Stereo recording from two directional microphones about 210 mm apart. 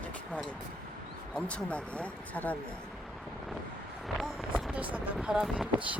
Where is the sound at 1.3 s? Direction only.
5° left (ahead or behind).